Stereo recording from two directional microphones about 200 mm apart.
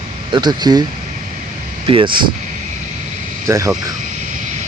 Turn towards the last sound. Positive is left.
turn(degrees=-15)  # may be behind; listen again after turning